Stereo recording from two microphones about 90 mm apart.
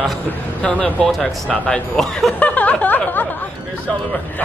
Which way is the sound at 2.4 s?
15° left (ahead or behind).